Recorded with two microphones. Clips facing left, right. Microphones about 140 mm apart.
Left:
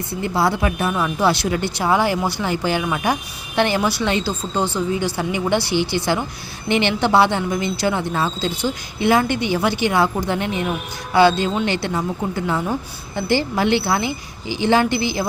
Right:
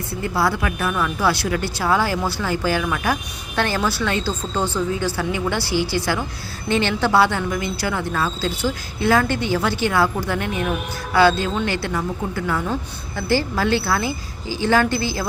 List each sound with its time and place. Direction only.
0.2 s speech: 25° left (ahead or behind)